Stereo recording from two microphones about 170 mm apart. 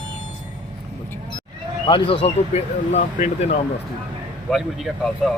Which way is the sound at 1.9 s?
35° left (ahead or behind).